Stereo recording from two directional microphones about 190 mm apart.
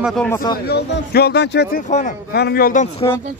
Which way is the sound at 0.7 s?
55° left (ahead or behind).